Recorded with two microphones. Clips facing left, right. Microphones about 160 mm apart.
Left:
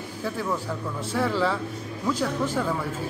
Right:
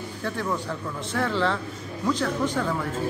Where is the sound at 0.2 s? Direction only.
5° left (ahead or behind).